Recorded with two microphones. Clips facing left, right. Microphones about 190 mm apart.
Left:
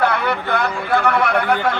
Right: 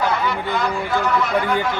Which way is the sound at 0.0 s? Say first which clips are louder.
Left 2 dB; 60° left (ahead or behind).